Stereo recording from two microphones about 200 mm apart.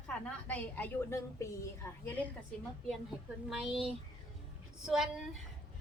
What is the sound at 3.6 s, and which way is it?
Speech, centre (ahead or behind).